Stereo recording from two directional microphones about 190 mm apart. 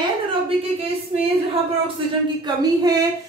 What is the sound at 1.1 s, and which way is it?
Speech, 25° right (ahead or behind).